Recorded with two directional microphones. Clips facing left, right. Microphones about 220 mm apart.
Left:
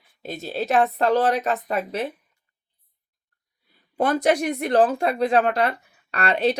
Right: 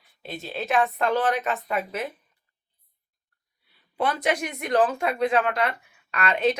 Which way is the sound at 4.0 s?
40° left (ahead or behind).